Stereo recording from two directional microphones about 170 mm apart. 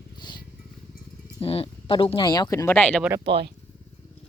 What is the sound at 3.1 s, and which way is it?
Speech, 30° right (ahead or behind).